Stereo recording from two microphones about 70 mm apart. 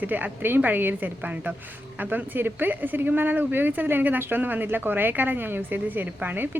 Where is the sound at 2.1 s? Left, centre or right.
Right.